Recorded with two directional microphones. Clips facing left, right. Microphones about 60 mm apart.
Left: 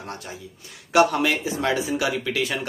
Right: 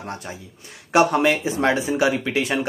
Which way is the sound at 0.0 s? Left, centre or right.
Right.